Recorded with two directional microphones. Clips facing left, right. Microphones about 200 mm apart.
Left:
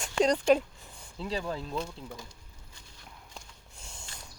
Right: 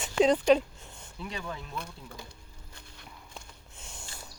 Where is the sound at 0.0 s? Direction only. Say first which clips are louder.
Right 2 dB; 5° right (ahead or behind).